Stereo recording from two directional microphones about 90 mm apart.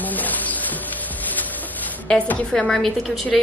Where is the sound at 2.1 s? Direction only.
15° left (ahead or behind).